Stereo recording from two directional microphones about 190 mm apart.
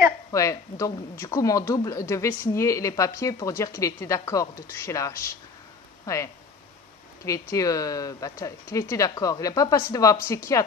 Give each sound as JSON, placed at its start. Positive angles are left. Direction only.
{"t": 0.3, "sound": "speech", "side_deg": 15}
{"t": 7.5, "sound": "speech", "side_deg": 15}